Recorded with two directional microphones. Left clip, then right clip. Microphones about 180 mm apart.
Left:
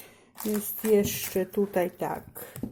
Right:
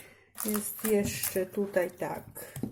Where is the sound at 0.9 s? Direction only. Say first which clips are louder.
Left 4 dB; 30° left (ahead or behind).